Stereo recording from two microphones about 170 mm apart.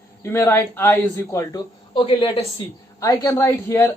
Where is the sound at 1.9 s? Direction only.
30° left (ahead or behind).